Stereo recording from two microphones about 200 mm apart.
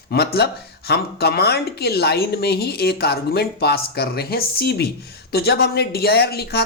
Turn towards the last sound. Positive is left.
turn(degrees=55)  # may be behind; listen again after turning